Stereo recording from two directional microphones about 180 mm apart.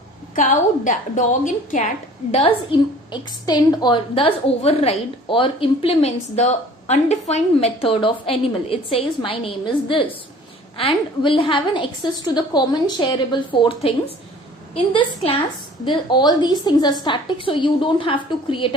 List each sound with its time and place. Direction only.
0.3 s a woman's voice: 45° left (ahead or behind)
3.1 s a woman's voice: 20° left (ahead or behind)
14.9 s a woman's voice: 30° left (ahead or behind)